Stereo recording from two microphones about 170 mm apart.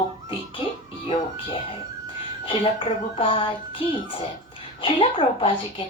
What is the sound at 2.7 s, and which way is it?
A woman's voice, 30° left (ahead or behind).